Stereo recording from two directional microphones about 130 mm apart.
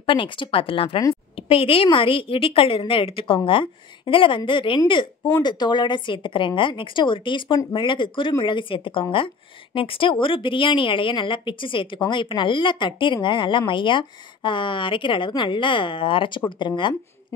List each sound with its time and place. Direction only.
0.0 s a woman's voice: 40° left (ahead or behind)